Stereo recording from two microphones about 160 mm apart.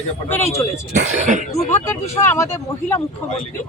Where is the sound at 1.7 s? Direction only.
15° left (ahead or behind).